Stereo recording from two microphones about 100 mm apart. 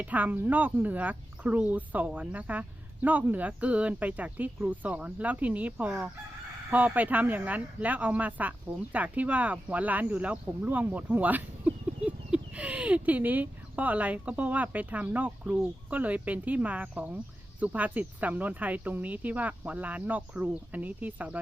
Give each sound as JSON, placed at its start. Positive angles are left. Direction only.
{"t": 0.0, "sound": "speech", "side_deg": -15}